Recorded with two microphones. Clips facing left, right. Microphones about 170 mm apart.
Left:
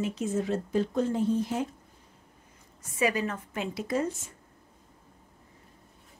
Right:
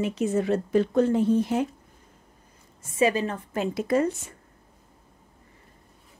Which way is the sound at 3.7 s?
60° right (ahead or behind).